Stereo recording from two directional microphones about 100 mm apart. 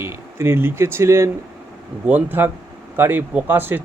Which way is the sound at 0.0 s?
25° right (ahead or behind).